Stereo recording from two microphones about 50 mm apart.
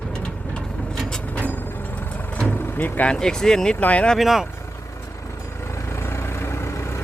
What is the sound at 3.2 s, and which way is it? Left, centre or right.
Speech, centre.